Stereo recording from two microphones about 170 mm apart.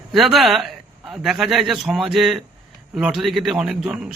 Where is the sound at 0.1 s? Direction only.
Centre (ahead or behind).